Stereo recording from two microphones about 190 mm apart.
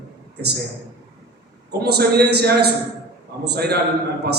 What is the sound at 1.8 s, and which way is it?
A man's voice, 60° right (ahead or behind).